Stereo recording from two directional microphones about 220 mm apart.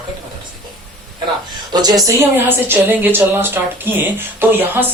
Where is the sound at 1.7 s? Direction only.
20° right (ahead or behind).